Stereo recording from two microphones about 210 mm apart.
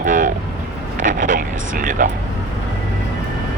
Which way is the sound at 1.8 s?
40° right (ahead or behind).